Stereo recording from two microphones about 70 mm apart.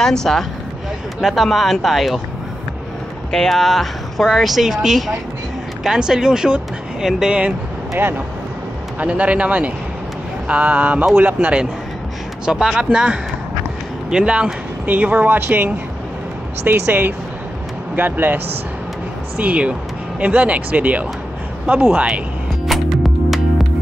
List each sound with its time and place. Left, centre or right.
0.0 s speech: centre
3.3 s speech: centre
7.9 s speech: right
9.0 s speech: centre
22.7 s music: centre